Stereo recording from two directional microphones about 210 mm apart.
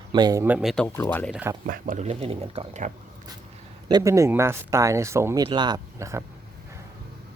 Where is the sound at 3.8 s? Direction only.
15° right (ahead or behind).